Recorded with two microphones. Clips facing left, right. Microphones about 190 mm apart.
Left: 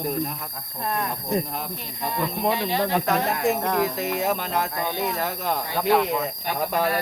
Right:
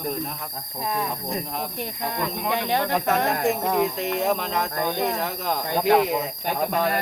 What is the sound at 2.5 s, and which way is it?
Speech, 55° right (ahead or behind).